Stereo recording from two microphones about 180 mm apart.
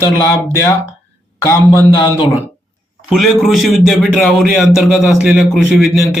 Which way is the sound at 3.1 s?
Centre (ahead or behind).